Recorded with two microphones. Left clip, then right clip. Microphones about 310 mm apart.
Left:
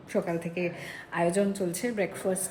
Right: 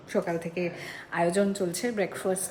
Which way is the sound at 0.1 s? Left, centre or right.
Centre.